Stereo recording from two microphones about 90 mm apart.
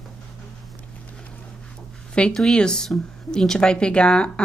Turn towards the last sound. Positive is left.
turn(degrees=10)  # may be behind; listen again after turning